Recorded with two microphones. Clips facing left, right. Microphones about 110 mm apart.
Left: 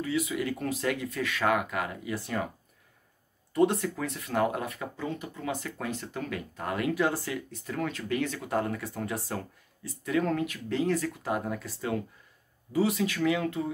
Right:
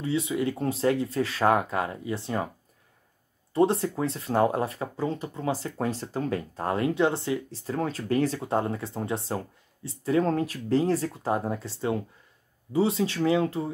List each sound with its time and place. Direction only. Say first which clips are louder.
0.0 s speech: right 3 dB; 30° right (ahead or behind)
3.5 s speech: right 2 dB; 30° right (ahead or behind)